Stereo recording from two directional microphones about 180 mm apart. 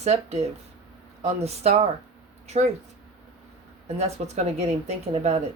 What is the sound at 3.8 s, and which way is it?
Speech, 35° right (ahead or behind).